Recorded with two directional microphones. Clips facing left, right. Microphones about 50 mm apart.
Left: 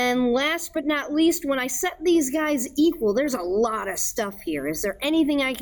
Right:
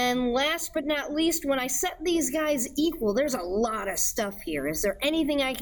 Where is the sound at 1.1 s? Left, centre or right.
Left.